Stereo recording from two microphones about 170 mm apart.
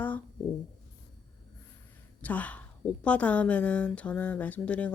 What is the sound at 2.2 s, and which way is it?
A woman's voice, 10° left (ahead or behind).